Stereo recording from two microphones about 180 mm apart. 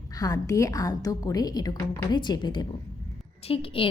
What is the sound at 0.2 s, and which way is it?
A woman's voice, 20° left (ahead or behind).